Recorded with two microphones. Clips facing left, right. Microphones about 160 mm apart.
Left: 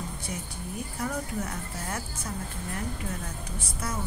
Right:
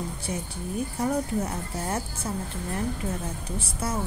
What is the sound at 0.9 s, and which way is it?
A woman's voice, 30° right (ahead or behind).